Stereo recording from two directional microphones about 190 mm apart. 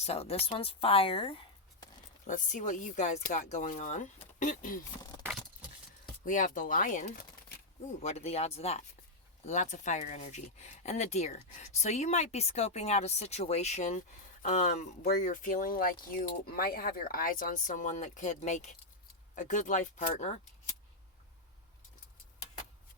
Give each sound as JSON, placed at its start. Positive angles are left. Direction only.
{"t": 0.0, "sound": "speech", "side_deg": 35}
{"t": 2.2, "sound": "speech", "side_deg": 40}
{"t": 6.2, "sound": "speech", "side_deg": 45}